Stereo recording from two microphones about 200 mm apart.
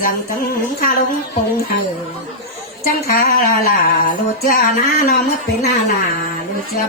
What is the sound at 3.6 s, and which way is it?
Speech, 45° left (ahead or behind).